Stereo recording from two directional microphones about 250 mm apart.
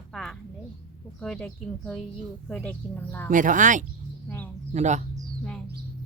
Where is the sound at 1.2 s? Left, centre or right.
Centre.